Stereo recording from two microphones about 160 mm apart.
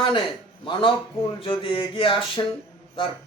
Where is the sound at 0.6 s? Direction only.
30° left (ahead or behind).